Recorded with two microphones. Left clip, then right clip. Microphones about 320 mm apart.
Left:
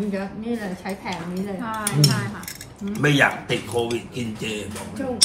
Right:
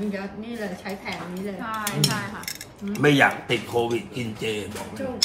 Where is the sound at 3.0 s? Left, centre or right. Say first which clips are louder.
Even; right.